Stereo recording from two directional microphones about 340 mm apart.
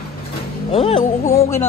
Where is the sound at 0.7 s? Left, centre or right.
Centre.